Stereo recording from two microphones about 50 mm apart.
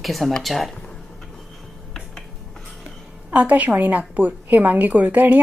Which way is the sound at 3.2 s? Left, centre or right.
Right.